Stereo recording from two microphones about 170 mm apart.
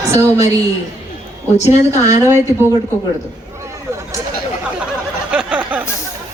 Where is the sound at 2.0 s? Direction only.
20° right (ahead or behind).